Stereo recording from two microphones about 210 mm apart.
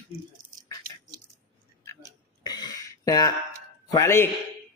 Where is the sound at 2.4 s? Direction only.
20° left (ahead or behind).